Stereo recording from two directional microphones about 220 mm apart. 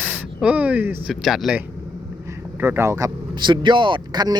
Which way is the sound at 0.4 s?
5° right (ahead or behind).